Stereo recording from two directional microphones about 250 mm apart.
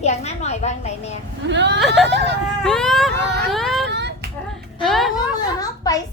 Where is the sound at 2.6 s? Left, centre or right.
Centre.